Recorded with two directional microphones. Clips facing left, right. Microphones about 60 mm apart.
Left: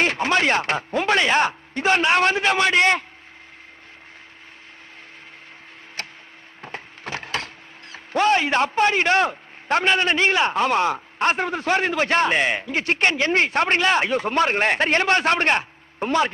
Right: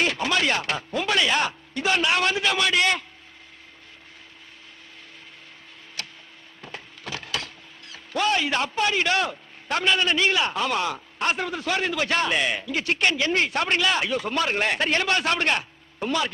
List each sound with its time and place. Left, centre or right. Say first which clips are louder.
0.0 s speech: left 4 dB; left
6.0 s tick-tock: left 3 dB; left
6.6 s speech: left 4 dB; left